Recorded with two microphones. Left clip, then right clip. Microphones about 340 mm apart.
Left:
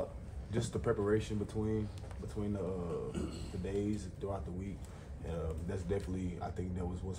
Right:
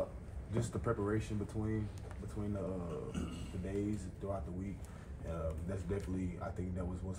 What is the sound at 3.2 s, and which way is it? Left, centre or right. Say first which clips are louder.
Speech: left 3 dB; centre.